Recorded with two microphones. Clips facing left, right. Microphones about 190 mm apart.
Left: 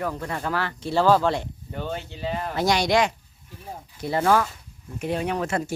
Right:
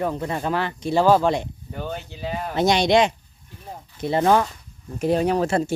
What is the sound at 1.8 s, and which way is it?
Speech, 5° right (ahead or behind).